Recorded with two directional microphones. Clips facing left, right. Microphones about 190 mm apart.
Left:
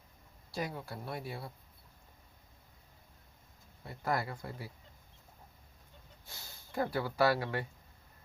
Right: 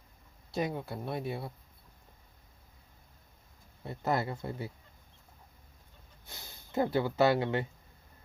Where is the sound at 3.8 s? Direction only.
25° right (ahead or behind).